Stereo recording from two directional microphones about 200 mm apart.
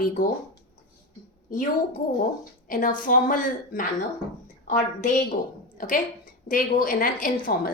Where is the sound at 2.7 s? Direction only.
40° left (ahead or behind).